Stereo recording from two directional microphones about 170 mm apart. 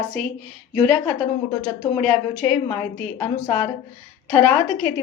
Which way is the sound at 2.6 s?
20° left (ahead or behind).